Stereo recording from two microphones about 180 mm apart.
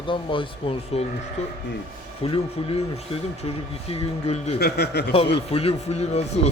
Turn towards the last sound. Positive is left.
turn(degrees=35)  # may be behind; listen again after turning